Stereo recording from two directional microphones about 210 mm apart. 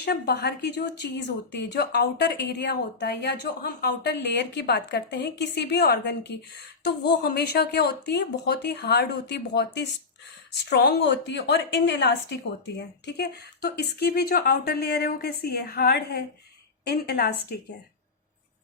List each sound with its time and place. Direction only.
0.0 s a woman's voice: 50° left (ahead or behind)